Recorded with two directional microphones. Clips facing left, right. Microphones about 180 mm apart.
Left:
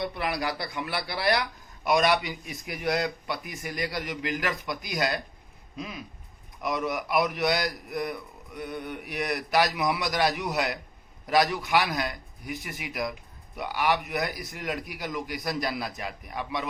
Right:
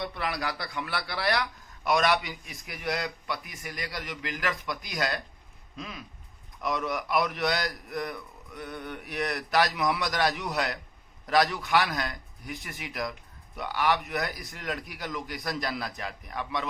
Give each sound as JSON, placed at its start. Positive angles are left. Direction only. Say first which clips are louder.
{"t": 0.0, "sound": "speech", "louder": "left 3 dB", "side_deg": 15}
{"t": 5.7, "sound": "a sound", "louder": "left 3 dB", "side_deg": 10}
{"t": 6.6, "sound": "speech", "louder": "left 1 dB", "side_deg": 10}